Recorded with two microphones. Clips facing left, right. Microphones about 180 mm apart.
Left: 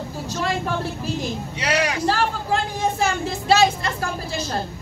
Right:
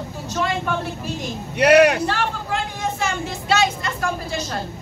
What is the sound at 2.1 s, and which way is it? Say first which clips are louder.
A woman's voice: left 3 dB; 35° left (ahead or behind).